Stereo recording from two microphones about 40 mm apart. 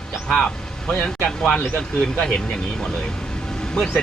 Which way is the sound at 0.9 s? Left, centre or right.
Centre.